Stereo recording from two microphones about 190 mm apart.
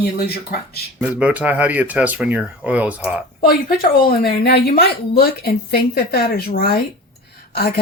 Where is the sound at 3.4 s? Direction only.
50° left (ahead or behind).